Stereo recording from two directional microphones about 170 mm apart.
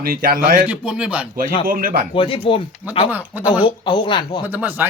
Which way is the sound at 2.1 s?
30° left (ahead or behind).